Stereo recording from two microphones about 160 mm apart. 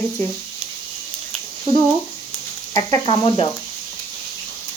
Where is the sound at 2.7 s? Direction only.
25° left (ahead or behind).